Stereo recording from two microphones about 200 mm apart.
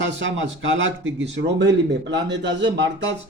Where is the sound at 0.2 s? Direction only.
70° right (ahead or behind).